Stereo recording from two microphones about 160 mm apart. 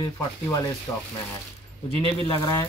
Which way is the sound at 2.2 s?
25° left (ahead or behind).